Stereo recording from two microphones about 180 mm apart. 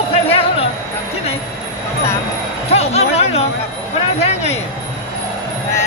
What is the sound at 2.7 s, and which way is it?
Speech, 35° left (ahead or behind).